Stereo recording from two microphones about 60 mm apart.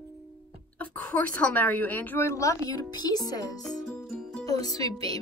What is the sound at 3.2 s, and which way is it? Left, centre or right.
Speech, left.